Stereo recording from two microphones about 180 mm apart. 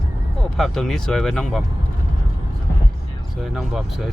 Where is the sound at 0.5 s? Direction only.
Centre (ahead or behind).